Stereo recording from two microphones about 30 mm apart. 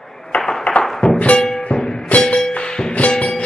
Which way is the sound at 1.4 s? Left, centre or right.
Left.